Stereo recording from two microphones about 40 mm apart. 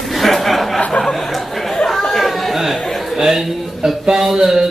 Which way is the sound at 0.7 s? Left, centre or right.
Left.